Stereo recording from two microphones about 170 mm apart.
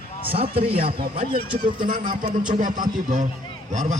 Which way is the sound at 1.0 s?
60° right (ahead or behind).